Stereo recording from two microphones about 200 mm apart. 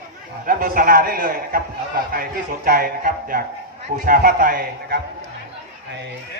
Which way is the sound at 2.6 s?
45° right (ahead or behind).